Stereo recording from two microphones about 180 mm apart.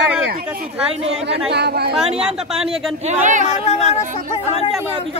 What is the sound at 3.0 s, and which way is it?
Speech, 45° right (ahead or behind).